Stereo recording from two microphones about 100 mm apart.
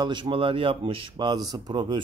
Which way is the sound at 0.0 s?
50° right (ahead or behind).